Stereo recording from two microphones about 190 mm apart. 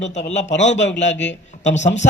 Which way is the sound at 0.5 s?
70° left (ahead or behind).